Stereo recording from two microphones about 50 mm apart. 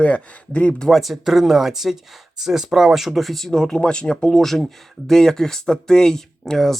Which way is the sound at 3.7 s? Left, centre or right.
Centre.